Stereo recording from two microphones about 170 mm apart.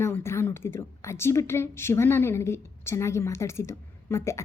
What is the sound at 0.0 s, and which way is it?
A woman's voice, 15° left (ahead or behind).